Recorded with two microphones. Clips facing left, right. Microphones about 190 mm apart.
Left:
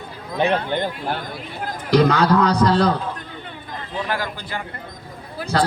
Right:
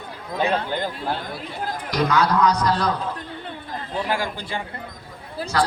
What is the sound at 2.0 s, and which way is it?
Speech, 30° left (ahead or behind).